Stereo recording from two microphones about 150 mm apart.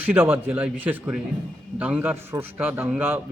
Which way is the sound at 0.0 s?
10° right (ahead or behind).